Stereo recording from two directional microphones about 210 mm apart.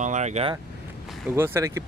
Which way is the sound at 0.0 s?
35° right (ahead or behind).